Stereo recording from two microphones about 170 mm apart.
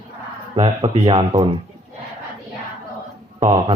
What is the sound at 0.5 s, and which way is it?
Speech, 35° right (ahead or behind).